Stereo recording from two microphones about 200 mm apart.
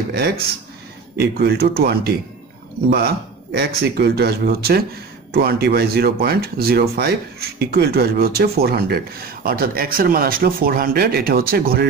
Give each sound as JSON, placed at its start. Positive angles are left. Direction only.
{"t": 1.1, "sound": "speech", "side_deg": -55}